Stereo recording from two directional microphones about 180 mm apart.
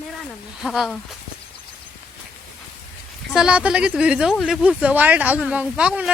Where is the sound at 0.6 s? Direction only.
Centre (ahead or behind).